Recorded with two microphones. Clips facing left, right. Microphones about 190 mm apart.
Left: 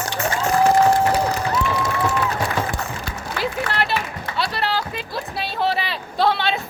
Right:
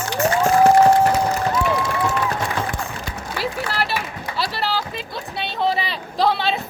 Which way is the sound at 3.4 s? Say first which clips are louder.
Left 1 dB; 5° right (ahead or behind).